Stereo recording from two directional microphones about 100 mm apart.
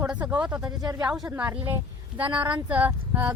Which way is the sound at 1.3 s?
15° right (ahead or behind).